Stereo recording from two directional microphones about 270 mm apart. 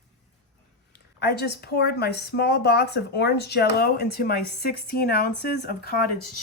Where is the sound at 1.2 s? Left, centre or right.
Left.